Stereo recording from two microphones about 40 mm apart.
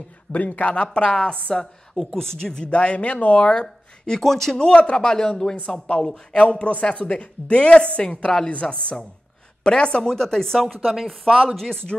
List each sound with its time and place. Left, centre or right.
0.3 s a man's voice: left
1.5 s a woman's voice: centre
4.2 s speech: centre
4.6 s speech: left
6.6 s speech: left; by 12.1 s centre